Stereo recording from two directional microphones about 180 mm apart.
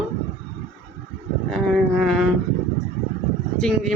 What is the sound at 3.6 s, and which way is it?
Speech, 5° left (ahead or behind).